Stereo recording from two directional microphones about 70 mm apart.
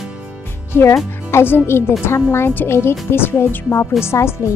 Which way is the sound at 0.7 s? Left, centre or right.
Left.